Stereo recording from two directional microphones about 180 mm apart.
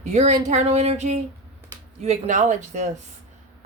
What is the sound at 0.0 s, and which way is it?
Speech, 40° right (ahead or behind).